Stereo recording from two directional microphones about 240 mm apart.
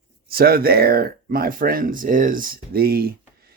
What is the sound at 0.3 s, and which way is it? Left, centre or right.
Speech, right.